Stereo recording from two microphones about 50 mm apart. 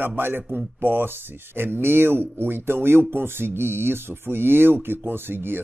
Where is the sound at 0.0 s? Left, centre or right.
Right.